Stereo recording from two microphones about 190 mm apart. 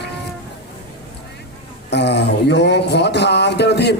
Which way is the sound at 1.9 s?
65° left (ahead or behind).